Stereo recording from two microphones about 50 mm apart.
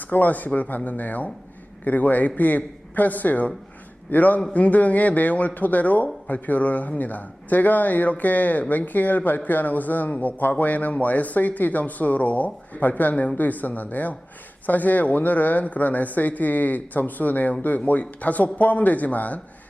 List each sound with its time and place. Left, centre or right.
0.0 s speech: left